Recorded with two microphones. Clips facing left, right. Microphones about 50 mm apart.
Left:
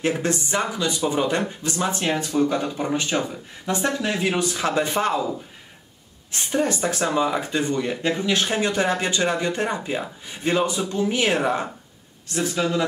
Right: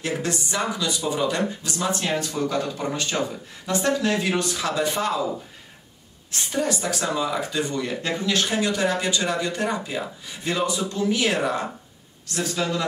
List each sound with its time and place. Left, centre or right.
0.0 s speech: left
6.5 s speech: left